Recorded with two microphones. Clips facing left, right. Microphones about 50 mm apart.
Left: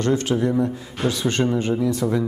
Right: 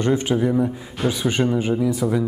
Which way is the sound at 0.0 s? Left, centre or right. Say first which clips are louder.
Right 1 dB; centre.